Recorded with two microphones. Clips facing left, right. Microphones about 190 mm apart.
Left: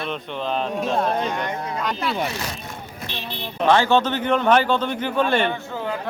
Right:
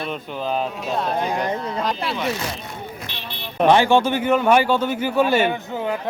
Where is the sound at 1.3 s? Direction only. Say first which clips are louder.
Right 3 dB; 35° right (ahead or behind).